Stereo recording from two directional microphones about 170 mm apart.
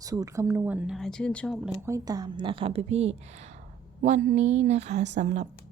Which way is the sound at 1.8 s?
20° right (ahead or behind).